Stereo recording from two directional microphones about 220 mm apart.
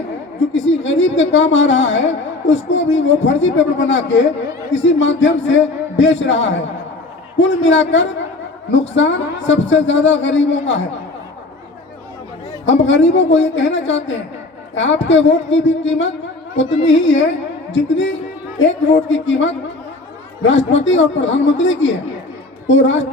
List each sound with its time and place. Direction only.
0.5 s a woman's voice: 60° left (ahead or behind)
12.6 s a woman's voice: 55° left (ahead or behind)